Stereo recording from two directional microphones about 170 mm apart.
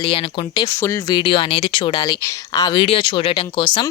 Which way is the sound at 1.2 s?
30° left (ahead or behind).